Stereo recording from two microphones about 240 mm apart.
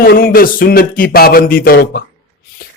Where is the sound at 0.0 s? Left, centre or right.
Left.